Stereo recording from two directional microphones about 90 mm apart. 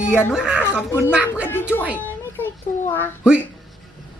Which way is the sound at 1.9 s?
20° left (ahead or behind).